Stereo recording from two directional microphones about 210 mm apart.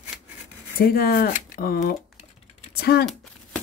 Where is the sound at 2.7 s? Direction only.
50° left (ahead or behind).